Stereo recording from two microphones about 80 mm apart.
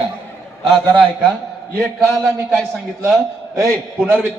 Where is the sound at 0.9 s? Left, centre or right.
Centre.